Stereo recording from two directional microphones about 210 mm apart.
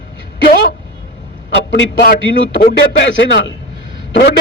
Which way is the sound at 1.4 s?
50° left (ahead or behind).